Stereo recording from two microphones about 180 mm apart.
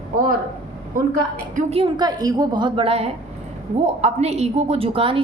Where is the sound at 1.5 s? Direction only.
45° right (ahead or behind).